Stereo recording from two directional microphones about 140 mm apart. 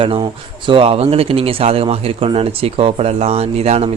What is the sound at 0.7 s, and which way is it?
Speech, 45° right (ahead or behind).